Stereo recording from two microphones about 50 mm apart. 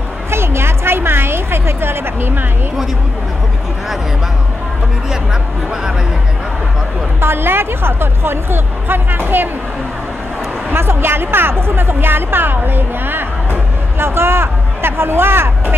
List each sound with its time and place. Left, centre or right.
0.3 s a sound: right
7.2 s a woman's voice: right
10.7 s a woman's voice: right